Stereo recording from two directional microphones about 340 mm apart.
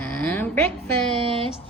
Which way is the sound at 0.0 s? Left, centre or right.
Centre.